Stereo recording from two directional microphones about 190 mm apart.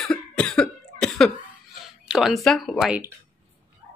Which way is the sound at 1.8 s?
Centre (ahead or behind).